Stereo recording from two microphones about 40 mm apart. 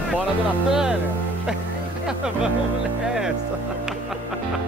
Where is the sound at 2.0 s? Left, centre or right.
Centre.